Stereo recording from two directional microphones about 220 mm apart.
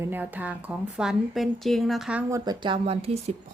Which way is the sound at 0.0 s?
10° right (ahead or behind).